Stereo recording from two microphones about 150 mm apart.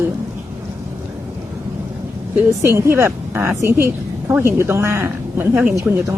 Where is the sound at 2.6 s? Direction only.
15° right (ahead or behind).